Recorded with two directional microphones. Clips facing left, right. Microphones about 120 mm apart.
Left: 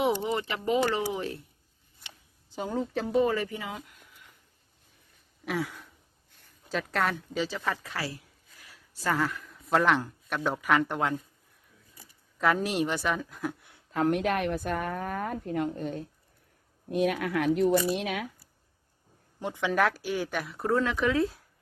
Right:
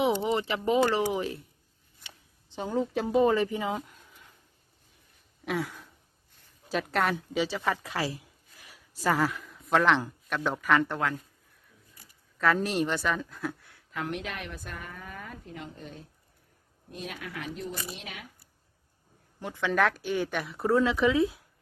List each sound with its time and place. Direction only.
0.0 s a sound: 5° right (ahead or behind)
0.3 s speech: 20° right (ahead or behind)
2.6 s speech: centre (ahead or behind)
2.9 s speech: 20° right (ahead or behind)
5.5 s speech: centre (ahead or behind)
8.6 s a sound: 10° right (ahead or behind)
9.0 s speech: 10° right (ahead or behind); by 11.2 s 15° left (ahead or behind)
12.6 s speech: 10° left (ahead or behind)
13.9 s a woman's voice: 45° left (ahead or behind)
16.9 s speech: 65° left (ahead or behind)
19.4 s speech: 15° left (ahead or behind)
19.7 s speech: 5° left (ahead or behind)